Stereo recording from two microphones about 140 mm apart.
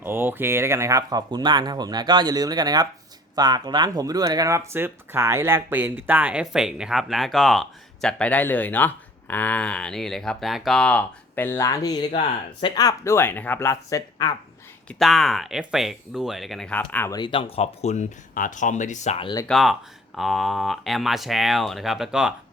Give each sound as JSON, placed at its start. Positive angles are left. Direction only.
{"t": 0.0, "sound": "speech", "side_deg": -15}
{"t": 14.8, "sound": "speech", "side_deg": 0}
{"t": 17.1, "sound": "speech", "side_deg": 30}
{"t": 19.2, "sound": "speech", "side_deg": 30}
{"t": 19.5, "sound": "speech", "side_deg": 0}